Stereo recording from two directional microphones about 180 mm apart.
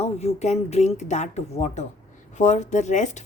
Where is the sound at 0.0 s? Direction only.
40° left (ahead or behind).